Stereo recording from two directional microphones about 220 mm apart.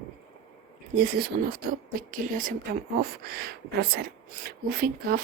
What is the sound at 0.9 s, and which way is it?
Speech, 45° right (ahead or behind).